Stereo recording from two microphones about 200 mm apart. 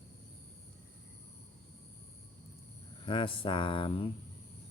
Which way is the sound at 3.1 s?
25° left (ahead or behind).